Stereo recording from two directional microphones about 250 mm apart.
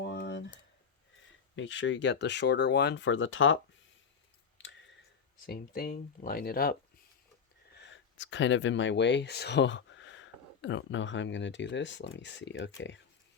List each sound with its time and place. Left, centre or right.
0.0 s a sound: left
1.5 s speech: left
5.5 s speech: left